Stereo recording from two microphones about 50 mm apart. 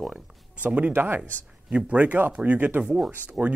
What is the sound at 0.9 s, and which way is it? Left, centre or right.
Speech, right.